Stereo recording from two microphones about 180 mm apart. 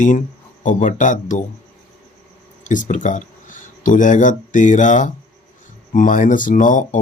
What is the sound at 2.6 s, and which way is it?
Speech, 45° left (ahead or behind).